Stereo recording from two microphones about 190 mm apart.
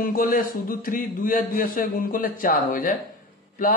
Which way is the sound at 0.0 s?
45° left (ahead or behind).